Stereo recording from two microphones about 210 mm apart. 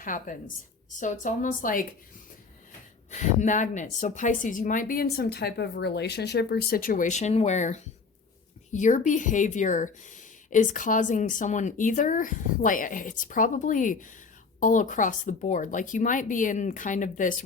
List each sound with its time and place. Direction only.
0.0 s speech: 40° left (ahead or behind)
3.1 s speech: 35° left (ahead or behind)